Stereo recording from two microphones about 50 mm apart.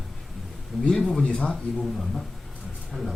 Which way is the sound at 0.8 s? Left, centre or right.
Centre.